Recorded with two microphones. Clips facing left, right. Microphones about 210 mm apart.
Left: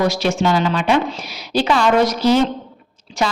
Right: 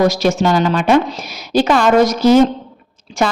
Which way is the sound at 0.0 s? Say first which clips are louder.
Right 4 dB; 40° right (ahead or behind).